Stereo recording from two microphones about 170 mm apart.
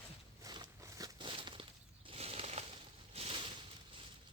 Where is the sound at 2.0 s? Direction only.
35° right (ahead or behind).